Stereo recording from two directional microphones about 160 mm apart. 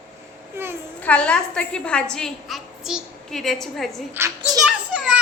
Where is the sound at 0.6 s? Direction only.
15° right (ahead or behind).